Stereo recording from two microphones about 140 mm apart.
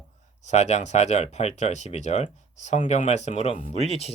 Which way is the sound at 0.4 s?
55° left (ahead or behind).